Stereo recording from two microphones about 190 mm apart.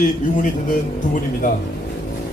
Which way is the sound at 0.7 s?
45° left (ahead or behind).